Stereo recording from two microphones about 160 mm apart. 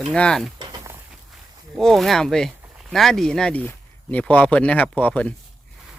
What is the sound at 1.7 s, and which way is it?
Speech, centre (ahead or behind).